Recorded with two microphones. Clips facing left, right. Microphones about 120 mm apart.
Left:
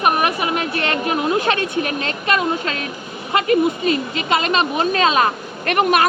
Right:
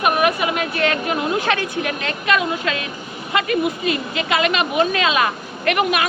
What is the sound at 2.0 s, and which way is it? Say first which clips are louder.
Speech: even; 35° left (ahead or behind).